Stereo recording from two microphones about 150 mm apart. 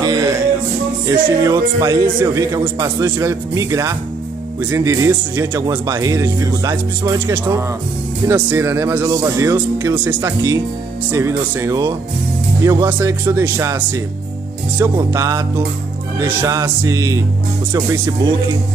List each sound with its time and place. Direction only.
0.0 s music: 25° right (ahead or behind)
1.0 s speech: 20° right (ahead or behind)